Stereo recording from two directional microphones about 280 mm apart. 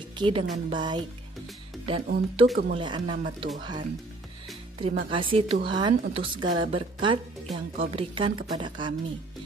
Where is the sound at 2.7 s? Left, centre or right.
Centre.